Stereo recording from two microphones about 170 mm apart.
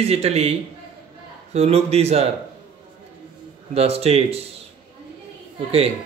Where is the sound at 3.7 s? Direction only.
35° right (ahead or behind).